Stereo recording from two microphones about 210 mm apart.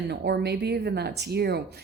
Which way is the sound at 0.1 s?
50° right (ahead or behind).